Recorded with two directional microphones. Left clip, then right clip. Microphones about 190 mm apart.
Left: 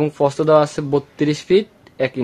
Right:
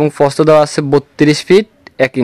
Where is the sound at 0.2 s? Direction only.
45° right (ahead or behind).